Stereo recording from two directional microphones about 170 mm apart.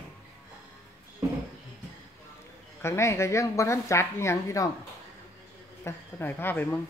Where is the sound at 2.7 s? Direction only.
15° left (ahead or behind).